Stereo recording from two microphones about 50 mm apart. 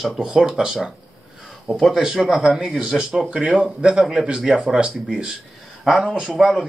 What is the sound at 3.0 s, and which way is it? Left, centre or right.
Speech, centre.